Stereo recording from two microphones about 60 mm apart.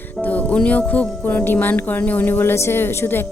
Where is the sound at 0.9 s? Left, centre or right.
Left.